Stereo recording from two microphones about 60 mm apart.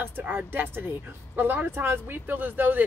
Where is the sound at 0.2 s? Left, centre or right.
Right.